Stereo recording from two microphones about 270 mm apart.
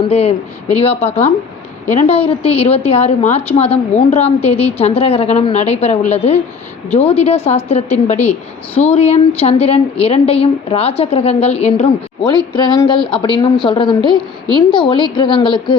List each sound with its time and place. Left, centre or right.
0.1 s a woman's voice: left
13.0 s speech: centre
13.2 s a woman's voice: centre